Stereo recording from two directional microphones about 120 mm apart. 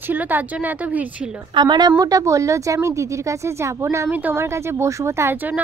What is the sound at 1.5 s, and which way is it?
Speech, 40° right (ahead or behind).